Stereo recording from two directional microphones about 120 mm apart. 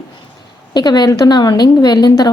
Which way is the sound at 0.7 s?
35° left (ahead or behind).